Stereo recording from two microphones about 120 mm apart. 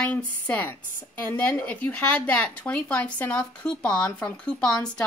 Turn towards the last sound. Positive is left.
turn(degrees=5)  # may be behind; listen again after turning